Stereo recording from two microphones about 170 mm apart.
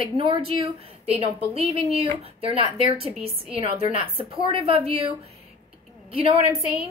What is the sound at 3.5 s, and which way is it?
A woman's voice, 35° right (ahead or behind).